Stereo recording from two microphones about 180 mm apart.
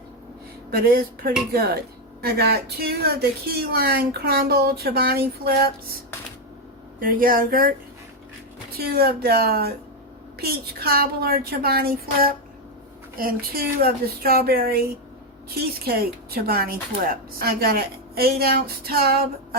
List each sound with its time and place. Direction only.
0.7 s speech: 55° right (ahead or behind)
7.0 s speech: 50° right (ahead or behind)
8.8 s speech: 60° right (ahead or behind)